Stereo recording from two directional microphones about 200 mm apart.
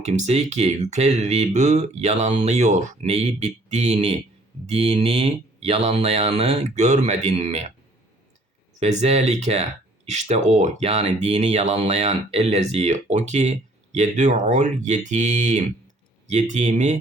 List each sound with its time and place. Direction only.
0.0 s speech: 35° right (ahead or behind)
8.8 s speech: 35° right (ahead or behind)